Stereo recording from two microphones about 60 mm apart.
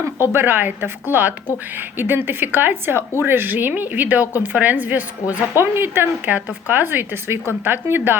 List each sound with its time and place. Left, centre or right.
0.0 s a woman's voice: right